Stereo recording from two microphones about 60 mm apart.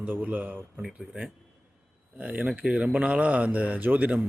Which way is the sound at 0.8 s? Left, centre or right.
Centre.